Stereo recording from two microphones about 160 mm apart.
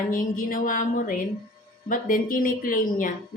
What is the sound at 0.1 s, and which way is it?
A woman's voice, 60° left (ahead or behind).